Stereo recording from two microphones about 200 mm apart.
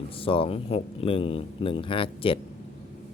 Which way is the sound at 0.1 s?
25° left (ahead or behind).